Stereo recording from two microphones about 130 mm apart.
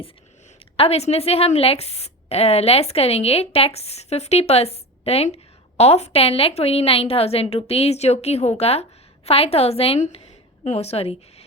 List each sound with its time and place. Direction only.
0.8 s a woman's voice: 50° left (ahead or behind)